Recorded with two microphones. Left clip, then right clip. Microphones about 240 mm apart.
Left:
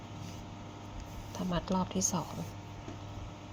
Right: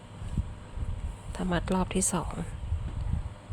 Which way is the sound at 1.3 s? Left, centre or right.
Centre.